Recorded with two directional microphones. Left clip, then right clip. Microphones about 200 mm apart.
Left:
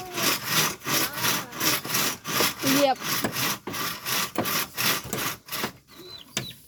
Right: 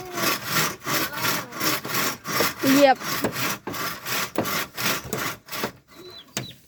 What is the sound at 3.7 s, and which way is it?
Wood, 15° right (ahead or behind).